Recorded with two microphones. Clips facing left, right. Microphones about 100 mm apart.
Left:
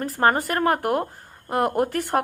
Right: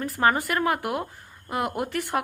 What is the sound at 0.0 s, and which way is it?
A woman's voice, 35° left (ahead or behind).